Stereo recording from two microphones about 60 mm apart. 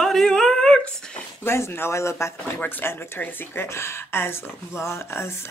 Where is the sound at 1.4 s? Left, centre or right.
Left.